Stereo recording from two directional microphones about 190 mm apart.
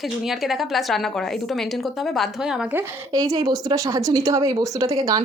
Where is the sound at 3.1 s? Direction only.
20° right (ahead or behind).